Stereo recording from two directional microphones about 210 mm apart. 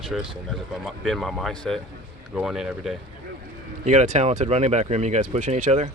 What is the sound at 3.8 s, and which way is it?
Speech, 35° right (ahead or behind).